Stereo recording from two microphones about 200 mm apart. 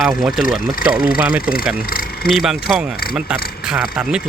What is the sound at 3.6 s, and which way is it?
Speech, 5° right (ahead or behind).